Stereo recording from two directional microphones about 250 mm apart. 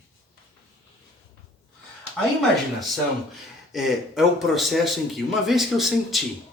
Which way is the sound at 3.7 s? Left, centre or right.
Centre.